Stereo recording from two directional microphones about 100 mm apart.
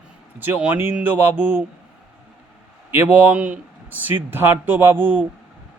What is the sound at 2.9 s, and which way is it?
Speech, 20° right (ahead or behind).